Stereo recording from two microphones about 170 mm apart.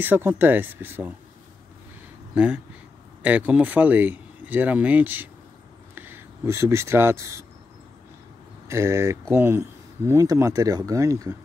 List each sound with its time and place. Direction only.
0.0 s speech: 10° right (ahead or behind)
2.3 s speech: 5° right (ahead or behind)
8.6 s speech: 15° right (ahead or behind)